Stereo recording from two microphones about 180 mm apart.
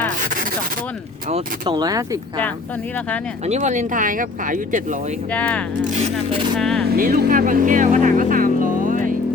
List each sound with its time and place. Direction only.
1.6 s speech: 25° right (ahead or behind)
3.4 s speech: 40° right (ahead or behind)
5.3 s speech: 5° left (ahead or behind)
5.8 s speech: 40° right (ahead or behind)
6.6 s speech: 5° left (ahead or behind)
6.9 s speech: 55° right (ahead or behind)